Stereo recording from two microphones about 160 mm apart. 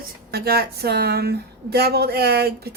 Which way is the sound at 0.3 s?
80° right.